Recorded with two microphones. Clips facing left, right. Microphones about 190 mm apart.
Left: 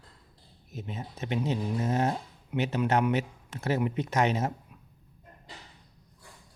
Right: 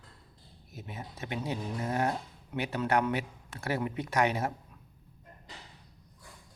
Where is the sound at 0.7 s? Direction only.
20° left (ahead or behind).